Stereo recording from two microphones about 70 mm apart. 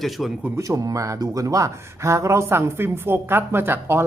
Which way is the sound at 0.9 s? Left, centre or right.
Right.